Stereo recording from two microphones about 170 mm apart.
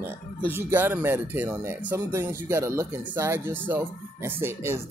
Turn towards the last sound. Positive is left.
turn(degrees=-15)  # may be behind; listen again after turning